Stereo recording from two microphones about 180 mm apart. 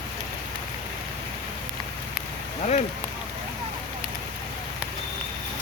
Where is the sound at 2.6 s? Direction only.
40° left (ahead or behind).